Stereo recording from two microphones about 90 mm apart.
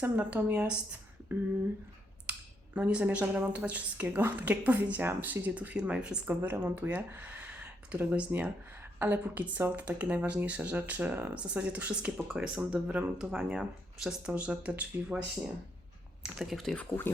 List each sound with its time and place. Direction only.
0.0 s speech: 20° right (ahead or behind)
2.7 s a woman's voice: 15° right (ahead or behind)
6.2 s speech: 20° right (ahead or behind)
16.2 s speech: centre (ahead or behind)